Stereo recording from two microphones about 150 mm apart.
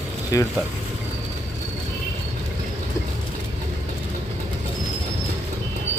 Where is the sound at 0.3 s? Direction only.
20° left (ahead or behind).